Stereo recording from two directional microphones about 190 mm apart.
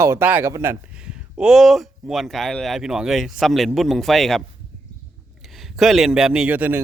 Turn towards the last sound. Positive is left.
turn(degrees=-10)  # may be behind; listen again after turning